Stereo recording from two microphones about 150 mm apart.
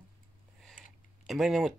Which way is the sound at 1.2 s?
Centre (ahead or behind).